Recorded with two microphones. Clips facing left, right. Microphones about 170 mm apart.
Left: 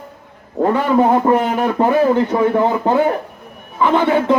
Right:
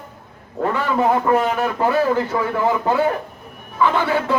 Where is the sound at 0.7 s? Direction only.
30° left (ahead or behind).